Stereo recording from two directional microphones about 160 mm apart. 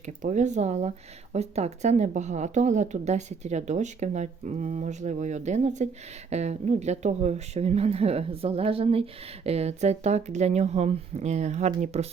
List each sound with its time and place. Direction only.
0.0 s speech: 50° right (ahead or behind)